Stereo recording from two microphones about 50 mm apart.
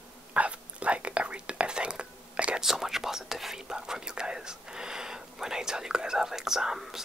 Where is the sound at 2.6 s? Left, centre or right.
Centre.